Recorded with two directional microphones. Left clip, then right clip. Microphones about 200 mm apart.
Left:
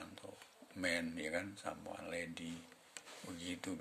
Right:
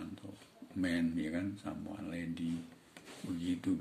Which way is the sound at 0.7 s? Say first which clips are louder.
Right 3 dB; 35° left (ahead or behind).